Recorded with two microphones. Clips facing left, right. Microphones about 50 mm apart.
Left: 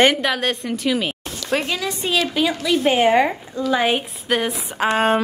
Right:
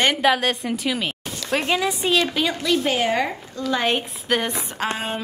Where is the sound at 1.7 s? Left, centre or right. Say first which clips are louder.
Right 3 dB; centre.